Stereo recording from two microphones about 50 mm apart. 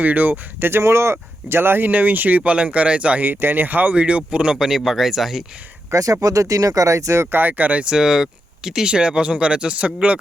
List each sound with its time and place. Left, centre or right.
0.0 s speech: right
0.6 s speech: right
1.9 s speech: right
3.2 s speech: right
3.9 s speech: right
4.5 s speech: centre
5.9 s speech: right
7.3 s speech: right
7.9 s speech: centre; by 10.2 s right